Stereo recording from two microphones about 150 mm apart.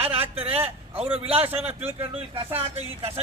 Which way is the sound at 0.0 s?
40° right (ahead or behind).